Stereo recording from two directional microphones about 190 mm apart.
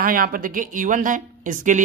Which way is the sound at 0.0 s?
45° right (ahead or behind).